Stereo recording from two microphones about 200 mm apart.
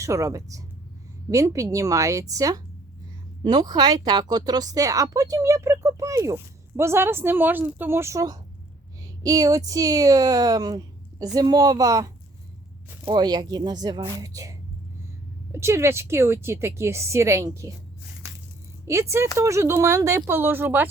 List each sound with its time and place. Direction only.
0.0 s a woman's voice: 15° right (ahead or behind)
15.5 s a woman's voice: 15° right (ahead or behind)
18.9 s a woman's voice: 15° right (ahead or behind)